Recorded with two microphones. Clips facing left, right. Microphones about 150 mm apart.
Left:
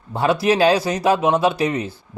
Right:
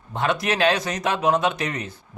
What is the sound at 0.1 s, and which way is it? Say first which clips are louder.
Speech: left 6 dB; 30° left (ahead or behind).